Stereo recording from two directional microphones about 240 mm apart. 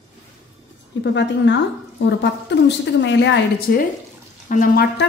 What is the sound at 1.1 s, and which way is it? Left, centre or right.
A woman's voice, left.